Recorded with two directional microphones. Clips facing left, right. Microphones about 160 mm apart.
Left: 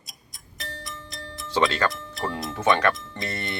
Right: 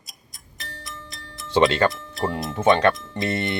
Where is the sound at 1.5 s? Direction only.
25° right (ahead or behind).